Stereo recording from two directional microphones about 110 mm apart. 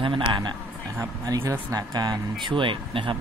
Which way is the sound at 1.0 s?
30° right (ahead or behind).